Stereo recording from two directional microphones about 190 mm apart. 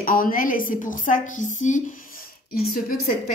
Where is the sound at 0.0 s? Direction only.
45° left (ahead or behind).